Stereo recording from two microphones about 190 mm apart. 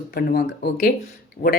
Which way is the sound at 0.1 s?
55° left (ahead or behind).